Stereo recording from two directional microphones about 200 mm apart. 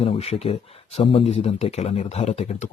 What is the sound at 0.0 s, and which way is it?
Speech, 30° left (ahead or behind).